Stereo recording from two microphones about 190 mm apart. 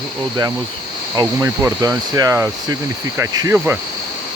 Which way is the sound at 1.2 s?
15° right (ahead or behind).